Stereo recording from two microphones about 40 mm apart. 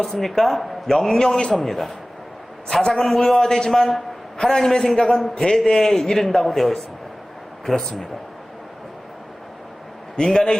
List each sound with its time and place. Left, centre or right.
0.0 s a man's voice: centre
10.2 s speech: centre